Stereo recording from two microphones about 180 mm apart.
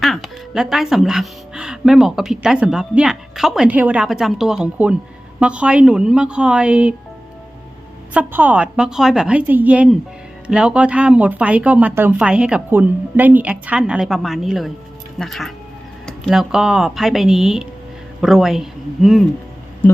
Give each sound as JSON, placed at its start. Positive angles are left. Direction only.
{"t": 0.0, "sound": "a woman's voice", "side_deg": 0}
{"t": 8.1, "sound": "a woman's voice", "side_deg": -10}